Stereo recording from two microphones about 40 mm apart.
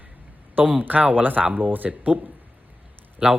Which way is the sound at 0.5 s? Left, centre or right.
Right.